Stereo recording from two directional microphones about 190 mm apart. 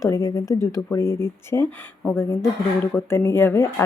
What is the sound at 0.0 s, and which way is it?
Speech, 15° left (ahead or behind).